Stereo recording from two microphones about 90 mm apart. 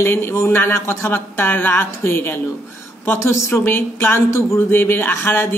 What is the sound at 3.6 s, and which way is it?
Speech, 25° left (ahead or behind).